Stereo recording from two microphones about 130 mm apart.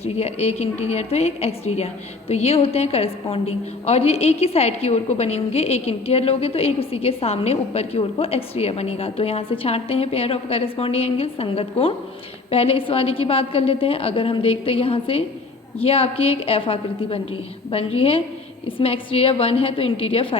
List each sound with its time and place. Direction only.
0.0 s a woman's voice: 55° left (ahead or behind)